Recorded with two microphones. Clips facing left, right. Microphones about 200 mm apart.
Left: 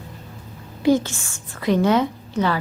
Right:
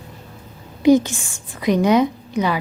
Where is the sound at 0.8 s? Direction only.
15° right (ahead or behind).